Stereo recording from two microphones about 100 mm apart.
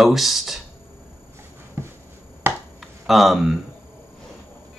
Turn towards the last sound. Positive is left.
turn(degrees=0)  # may be behind; listen again after turning